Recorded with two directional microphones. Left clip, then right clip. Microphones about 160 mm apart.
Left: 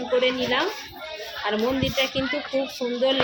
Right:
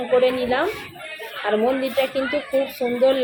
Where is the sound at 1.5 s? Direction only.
20° left (ahead or behind).